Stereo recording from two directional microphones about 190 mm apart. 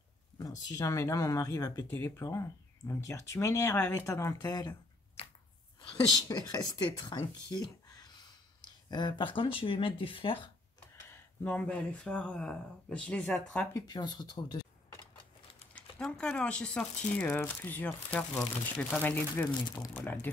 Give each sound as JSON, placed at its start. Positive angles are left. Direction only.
{"t": 0.4, "sound": "speech", "side_deg": 20}
{"t": 5.8, "sound": "a woman's voice", "side_deg": 20}
{"t": 11.1, "sound": "speech", "side_deg": 10}
{"t": 13.7, "sound": "speech", "side_deg": 20}
{"t": 15.7, "sound": "speech", "side_deg": 5}